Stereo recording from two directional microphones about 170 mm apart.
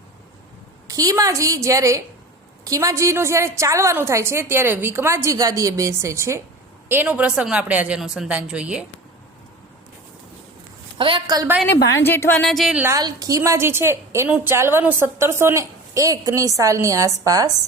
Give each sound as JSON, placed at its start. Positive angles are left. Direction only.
{"t": 0.9, "sound": "a woman's voice", "side_deg": -20}
{"t": 10.9, "sound": "a woman's voice", "side_deg": -30}
{"t": 12.0, "sound": "speech", "side_deg": 10}
{"t": 12.5, "sound": "a woman's voice", "side_deg": 0}
{"t": 12.8, "sound": "a woman's voice", "side_deg": -20}